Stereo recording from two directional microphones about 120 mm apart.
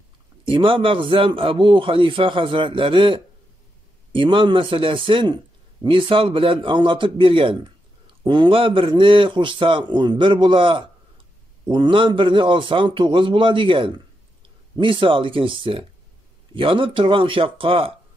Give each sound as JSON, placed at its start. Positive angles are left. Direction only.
{"t": 0.5, "sound": "a man's voice", "side_deg": -45}